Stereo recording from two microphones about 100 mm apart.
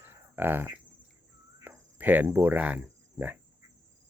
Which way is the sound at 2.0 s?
15° right (ahead or behind).